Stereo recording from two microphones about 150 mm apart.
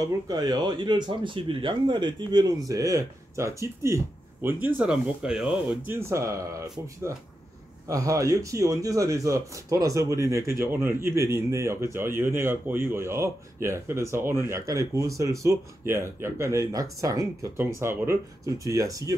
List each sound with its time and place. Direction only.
0.3 s a man's voice: 25° right (ahead or behind); by 5.8 s 5° right (ahead or behind)
5.9 s a man's voice: 15° right (ahead or behind)